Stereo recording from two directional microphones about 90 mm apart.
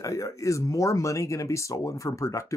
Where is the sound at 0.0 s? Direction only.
35° left (ahead or behind).